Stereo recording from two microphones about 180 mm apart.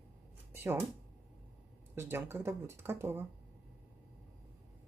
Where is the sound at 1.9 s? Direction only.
15° right (ahead or behind).